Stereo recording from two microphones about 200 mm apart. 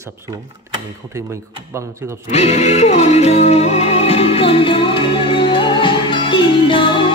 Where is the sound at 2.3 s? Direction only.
35° left (ahead or behind).